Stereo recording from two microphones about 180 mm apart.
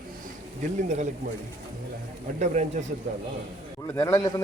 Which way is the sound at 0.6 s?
40° right (ahead or behind).